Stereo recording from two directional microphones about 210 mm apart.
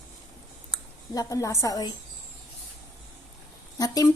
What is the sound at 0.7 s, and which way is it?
Speech, 15° left (ahead or behind).